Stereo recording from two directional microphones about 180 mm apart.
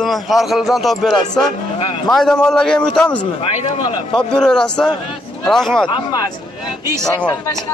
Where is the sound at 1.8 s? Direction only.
30° left (ahead or behind).